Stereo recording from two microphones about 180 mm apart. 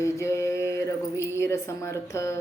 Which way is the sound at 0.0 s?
15° left (ahead or behind).